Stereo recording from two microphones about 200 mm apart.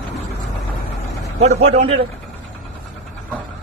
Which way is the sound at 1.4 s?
35° right (ahead or behind).